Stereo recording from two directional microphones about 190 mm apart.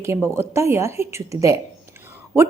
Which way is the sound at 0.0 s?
15° right (ahead or behind).